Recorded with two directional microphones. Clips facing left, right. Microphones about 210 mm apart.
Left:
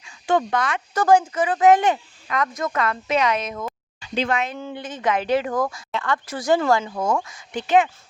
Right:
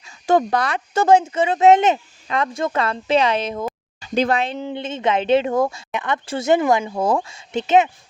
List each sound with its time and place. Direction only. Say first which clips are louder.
0.0 s speech: right 4 dB; 35° right (ahead or behind)
1.0 s speech: right 2 dB; 25° right (ahead or behind)
4.5 s speech: right 5 dB; 20° right (ahead or behind)
7.0 s speech: right 3 dB; 30° right (ahead or behind)